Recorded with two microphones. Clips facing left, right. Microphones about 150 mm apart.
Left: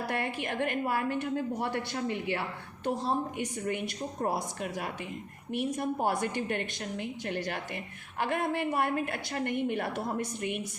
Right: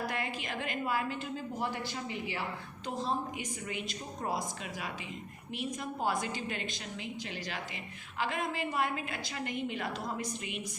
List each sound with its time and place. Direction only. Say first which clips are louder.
0.0 s a woman's voice: left 4 dB; 60° left (ahead or behind)